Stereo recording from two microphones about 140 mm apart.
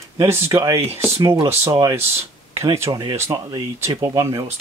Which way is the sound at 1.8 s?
30° right (ahead or behind).